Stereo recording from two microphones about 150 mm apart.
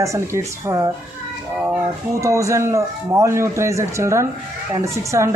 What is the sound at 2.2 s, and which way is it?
Speech, 20° right (ahead or behind).